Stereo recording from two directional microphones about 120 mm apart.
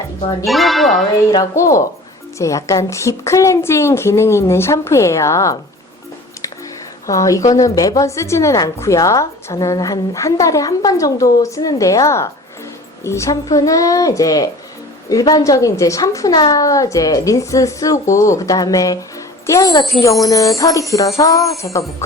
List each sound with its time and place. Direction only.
0.4 s speech: centre (ahead or behind)
1.3 s a woman's voice: 30° left (ahead or behind)
7.1 s a woman's voice: 30° left (ahead or behind)